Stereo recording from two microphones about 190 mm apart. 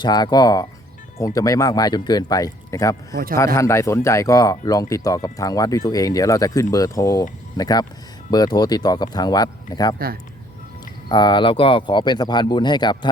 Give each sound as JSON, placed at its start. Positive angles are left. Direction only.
{"t": 0.0, "sound": "speech", "side_deg": 20}
{"t": 11.1, "sound": "speech", "side_deg": 25}